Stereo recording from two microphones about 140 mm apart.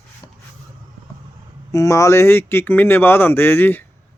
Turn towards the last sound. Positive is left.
turn(degrees=15)  # may be behind; listen again after turning